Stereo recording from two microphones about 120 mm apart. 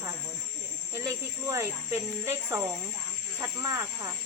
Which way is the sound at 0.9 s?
25° right (ahead or behind).